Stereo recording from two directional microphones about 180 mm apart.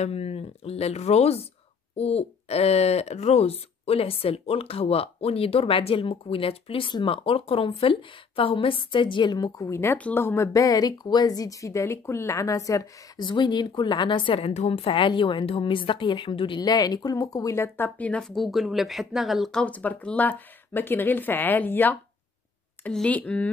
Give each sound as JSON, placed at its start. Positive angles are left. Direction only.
{"t": 0.0, "sound": "speech", "side_deg": 35}